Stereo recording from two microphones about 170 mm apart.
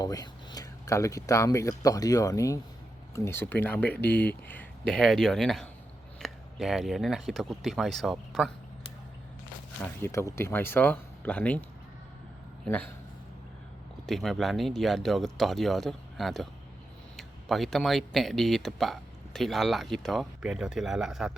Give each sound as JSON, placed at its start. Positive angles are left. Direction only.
{"t": 0.0, "sound": "speech", "side_deg": 20}
{"t": 9.8, "sound": "speech", "side_deg": 15}
{"t": 14.1, "sound": "speech", "side_deg": 0}